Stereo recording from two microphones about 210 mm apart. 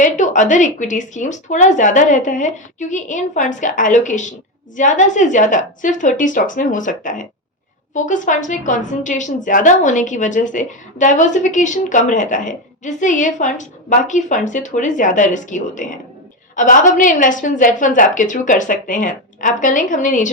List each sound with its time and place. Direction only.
0.0 s a woman's voice: 35° left (ahead or behind)